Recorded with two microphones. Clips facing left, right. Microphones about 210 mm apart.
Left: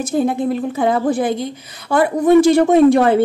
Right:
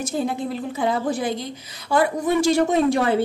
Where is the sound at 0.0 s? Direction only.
55° left (ahead or behind).